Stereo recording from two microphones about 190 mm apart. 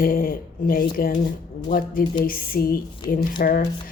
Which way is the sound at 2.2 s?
50° left (ahead or behind).